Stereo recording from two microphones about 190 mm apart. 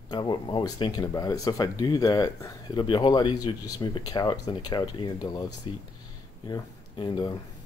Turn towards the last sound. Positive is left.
turn(degrees=25)  # may be behind; listen again after turning